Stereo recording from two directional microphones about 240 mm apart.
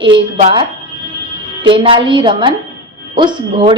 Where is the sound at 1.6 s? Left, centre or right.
Right.